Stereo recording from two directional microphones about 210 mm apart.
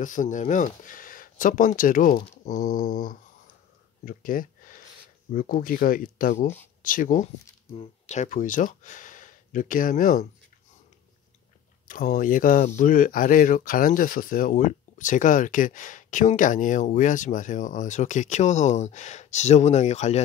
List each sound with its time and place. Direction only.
0.0 s speech: 40° left (ahead or behind)
4.0 s a sound: 40° left (ahead or behind)
5.3 s speech: 40° left (ahead or behind)
11.9 s speech: 40° left (ahead or behind)